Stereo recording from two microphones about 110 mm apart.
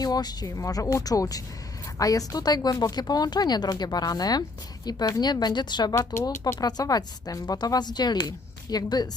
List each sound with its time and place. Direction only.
0.0 s a woman's voice: 35° left (ahead or behind)